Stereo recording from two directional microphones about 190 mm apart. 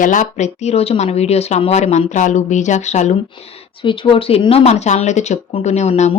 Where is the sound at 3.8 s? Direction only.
25° left (ahead or behind).